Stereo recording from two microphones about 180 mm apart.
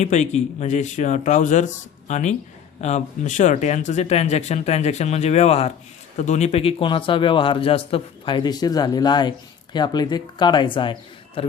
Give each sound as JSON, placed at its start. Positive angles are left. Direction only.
{"t": 0.0, "sound": "a man's voice", "side_deg": 40}